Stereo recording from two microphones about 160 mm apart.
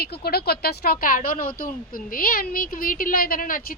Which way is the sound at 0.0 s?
80° left.